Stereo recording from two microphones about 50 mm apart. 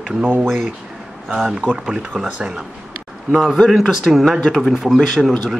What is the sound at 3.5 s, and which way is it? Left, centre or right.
Speech, centre.